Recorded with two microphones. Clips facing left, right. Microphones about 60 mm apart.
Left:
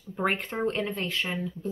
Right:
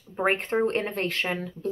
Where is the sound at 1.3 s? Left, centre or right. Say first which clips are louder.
Right 2 dB; right.